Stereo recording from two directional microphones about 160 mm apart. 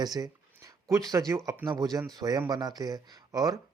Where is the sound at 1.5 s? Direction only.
20° right (ahead or behind).